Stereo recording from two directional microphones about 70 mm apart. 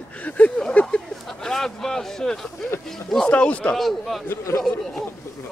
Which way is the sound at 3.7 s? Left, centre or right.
Centre.